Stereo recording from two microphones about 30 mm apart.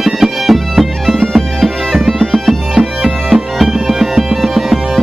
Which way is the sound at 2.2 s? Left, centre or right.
Centre.